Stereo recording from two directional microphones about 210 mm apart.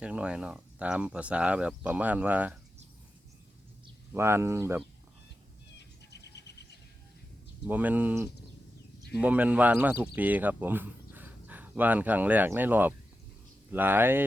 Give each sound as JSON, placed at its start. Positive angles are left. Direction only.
{"t": 0.0, "sound": "speech", "side_deg": -5}
{"t": 4.1, "sound": "speech", "side_deg": -10}
{"t": 6.1, "sound": "a sound", "side_deg": 55}
{"t": 7.7, "sound": "speech", "side_deg": -10}